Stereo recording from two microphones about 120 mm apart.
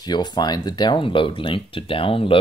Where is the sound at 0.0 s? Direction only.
35° left (ahead or behind).